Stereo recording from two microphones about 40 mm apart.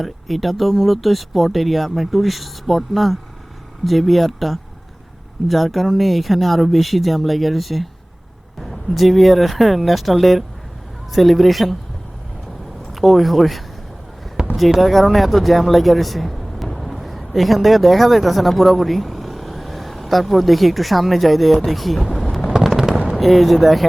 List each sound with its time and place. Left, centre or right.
0.0 s speech: centre
12.9 s speech: centre
14.4 s a sound: centre
14.8 s speech: centre
22.1 s a sound: centre
22.4 s fireworks: centre
23.1 s speech: centre